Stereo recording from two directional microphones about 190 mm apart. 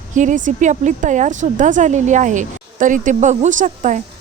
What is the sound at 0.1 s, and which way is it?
Speech, 40° right (ahead or behind).